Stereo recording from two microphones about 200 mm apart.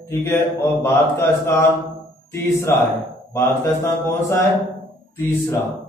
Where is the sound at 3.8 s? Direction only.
10° left (ahead or behind).